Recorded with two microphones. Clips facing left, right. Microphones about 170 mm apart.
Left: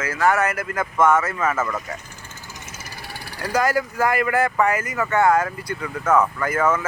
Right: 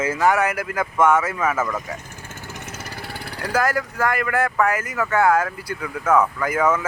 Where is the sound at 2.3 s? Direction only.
60° right (ahead or behind).